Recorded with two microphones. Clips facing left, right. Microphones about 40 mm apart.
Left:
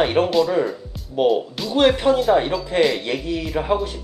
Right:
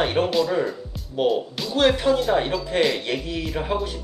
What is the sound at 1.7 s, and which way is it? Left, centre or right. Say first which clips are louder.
Speech: left 3 dB; centre.